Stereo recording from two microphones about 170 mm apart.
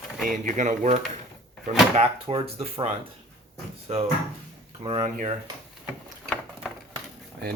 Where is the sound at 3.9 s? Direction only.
45° right (ahead or behind).